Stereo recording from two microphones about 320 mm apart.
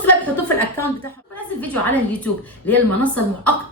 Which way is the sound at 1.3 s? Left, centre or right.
Centre.